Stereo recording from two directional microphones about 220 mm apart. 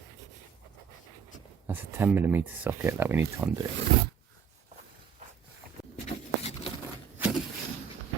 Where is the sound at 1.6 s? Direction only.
10° right (ahead or behind).